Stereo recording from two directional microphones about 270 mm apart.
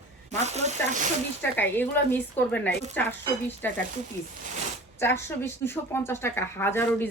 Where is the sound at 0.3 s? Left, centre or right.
Right.